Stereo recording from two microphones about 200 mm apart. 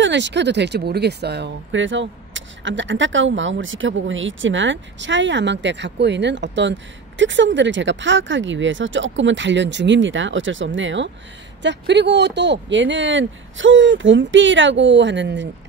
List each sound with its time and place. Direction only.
0.0 s speech: 65° right (ahead or behind)